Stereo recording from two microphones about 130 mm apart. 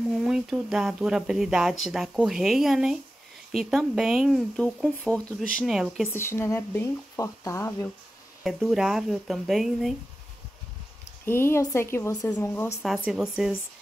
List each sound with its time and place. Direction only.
0.1 s speech: 5° right (ahead or behind)
6.0 s speech: 20° left (ahead or behind)
8.5 s speech: 5° right (ahead or behind)
11.2 s speech: 20° left (ahead or behind)
12.8 s speech: 5° right (ahead or behind)